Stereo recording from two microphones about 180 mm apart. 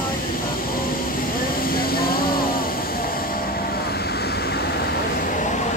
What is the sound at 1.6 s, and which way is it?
Vehicle, 55° left (ahead or behind).